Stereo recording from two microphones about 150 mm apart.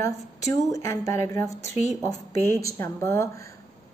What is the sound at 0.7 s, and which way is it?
A woman's voice, 20° left (ahead or behind).